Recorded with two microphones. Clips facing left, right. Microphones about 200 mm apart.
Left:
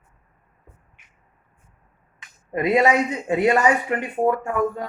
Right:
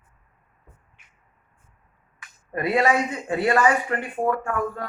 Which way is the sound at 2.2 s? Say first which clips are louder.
Left 4 dB; 20° left (ahead or behind).